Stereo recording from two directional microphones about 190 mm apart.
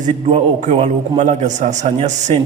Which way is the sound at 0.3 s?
35° right (ahead or behind).